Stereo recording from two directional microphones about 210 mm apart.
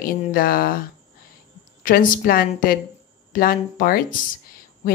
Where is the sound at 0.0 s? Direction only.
45° left (ahead or behind).